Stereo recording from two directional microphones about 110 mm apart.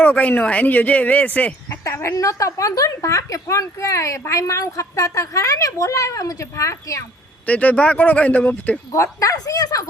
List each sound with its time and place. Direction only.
0.0 s speech: 15° left (ahead or behind)
1.8 s a woman's voice: 25° left (ahead or behind)
7.4 s speech: 15° left (ahead or behind)
8.9 s speech: 30° left (ahead or behind)